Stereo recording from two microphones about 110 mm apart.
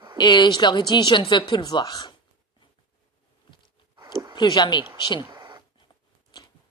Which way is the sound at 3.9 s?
35° right (ahead or behind).